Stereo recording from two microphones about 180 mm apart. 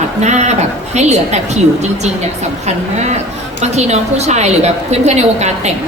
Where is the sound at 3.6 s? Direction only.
40° right (ahead or behind).